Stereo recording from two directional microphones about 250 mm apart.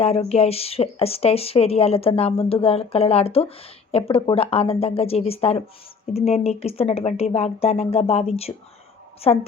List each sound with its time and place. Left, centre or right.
0.0 s speech: left